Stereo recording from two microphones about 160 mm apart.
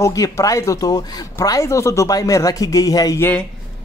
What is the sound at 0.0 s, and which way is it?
Speech, 20° left (ahead or behind).